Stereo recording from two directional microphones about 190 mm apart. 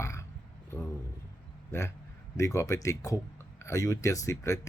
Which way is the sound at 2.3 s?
15° left (ahead or behind).